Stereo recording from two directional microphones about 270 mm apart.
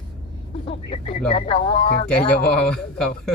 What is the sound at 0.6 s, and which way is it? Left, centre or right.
A man's voice, left.